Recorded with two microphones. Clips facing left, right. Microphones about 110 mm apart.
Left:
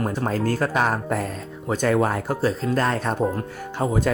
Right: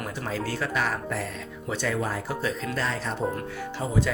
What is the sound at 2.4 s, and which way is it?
Speech, 35° left (ahead or behind).